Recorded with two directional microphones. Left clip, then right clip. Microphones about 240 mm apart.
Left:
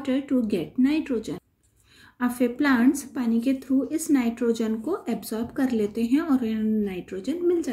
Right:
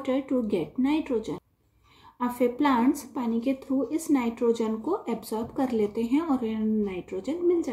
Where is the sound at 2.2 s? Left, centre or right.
Centre.